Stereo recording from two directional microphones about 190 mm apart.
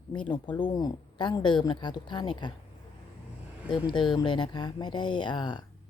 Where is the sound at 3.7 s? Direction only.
25° left (ahead or behind).